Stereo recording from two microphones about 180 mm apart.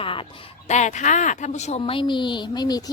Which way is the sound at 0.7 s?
40° left (ahead or behind).